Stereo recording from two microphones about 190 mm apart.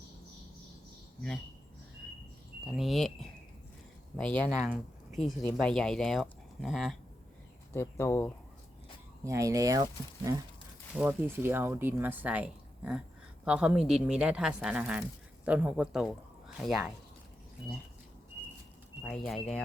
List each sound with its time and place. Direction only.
2.6 s speech: centre (ahead or behind)
7.7 s speech: 15° left (ahead or behind)
9.2 s speech: 15° right (ahead or behind); by 16.9 s centre (ahead or behind)
19.0 s speech: centre (ahead or behind)